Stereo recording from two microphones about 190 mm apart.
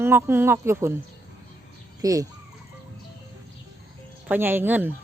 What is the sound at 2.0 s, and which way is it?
Speech, 15° right (ahead or behind).